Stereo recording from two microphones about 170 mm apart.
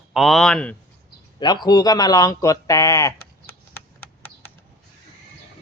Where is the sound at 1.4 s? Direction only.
25° left (ahead or behind).